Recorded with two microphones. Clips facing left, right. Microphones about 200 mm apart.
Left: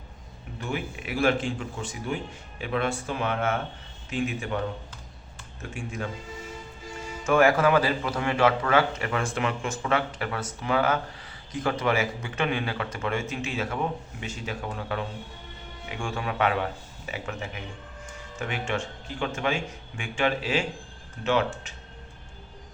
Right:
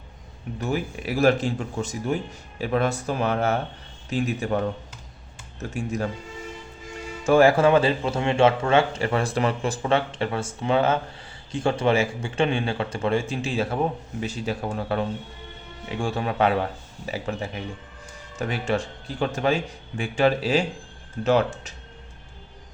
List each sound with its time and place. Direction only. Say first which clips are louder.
0.6 s speech: right 5 dB; 40° right (ahead or behind)
5.7 s speech: right 7 dB; 40° right (ahead or behind)
7.3 s a man's voice: right 4 dB; 30° right (ahead or behind)